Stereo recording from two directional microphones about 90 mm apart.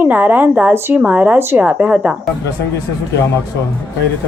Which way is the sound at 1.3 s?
25° right (ahead or behind).